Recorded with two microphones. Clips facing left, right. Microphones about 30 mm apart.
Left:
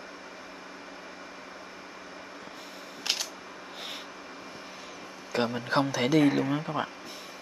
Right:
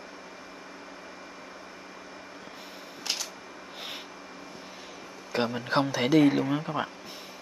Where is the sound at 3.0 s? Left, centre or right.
Centre.